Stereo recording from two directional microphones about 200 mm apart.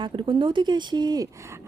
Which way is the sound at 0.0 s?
25° right (ahead or behind).